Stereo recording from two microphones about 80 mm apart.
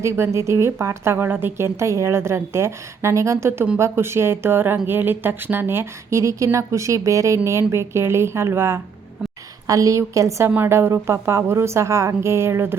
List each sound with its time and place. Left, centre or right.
0.0 s a woman's voice: right
9.6 s a woman's voice: right
10.5 s a woman's voice: right